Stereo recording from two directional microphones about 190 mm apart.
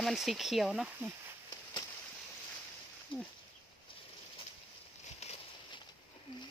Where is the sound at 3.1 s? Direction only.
25° left (ahead or behind).